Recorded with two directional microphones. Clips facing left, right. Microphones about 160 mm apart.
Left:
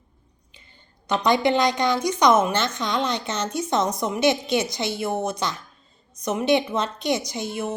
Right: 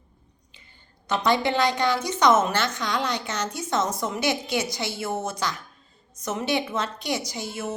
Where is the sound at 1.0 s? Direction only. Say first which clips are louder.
Left 3 dB; 15° left (ahead or behind).